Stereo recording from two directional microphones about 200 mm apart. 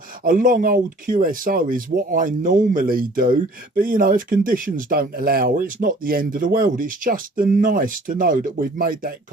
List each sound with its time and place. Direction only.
0.3 s speech: 45° right (ahead or behind)